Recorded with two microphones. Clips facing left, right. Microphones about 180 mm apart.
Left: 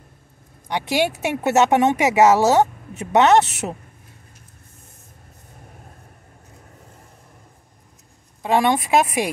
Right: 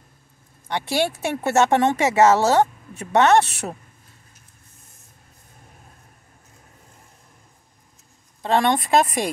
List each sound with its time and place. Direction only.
0.7 s speech: 15° left (ahead or behind)
8.4 s speech: 10° left (ahead or behind)